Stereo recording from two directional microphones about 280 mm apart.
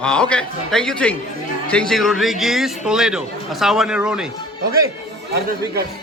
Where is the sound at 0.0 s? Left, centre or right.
Centre.